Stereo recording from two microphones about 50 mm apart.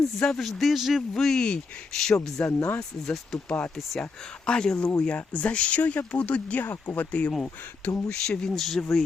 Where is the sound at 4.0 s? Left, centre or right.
Centre.